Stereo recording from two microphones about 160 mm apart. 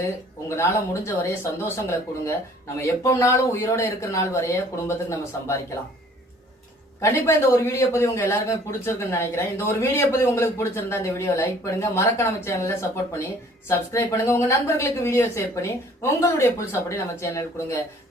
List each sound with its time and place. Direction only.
0.4 s speech: 20° left (ahead or behind)
7.0 s speech: 15° left (ahead or behind)